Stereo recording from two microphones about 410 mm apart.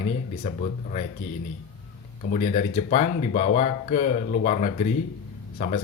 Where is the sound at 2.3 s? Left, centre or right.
Centre.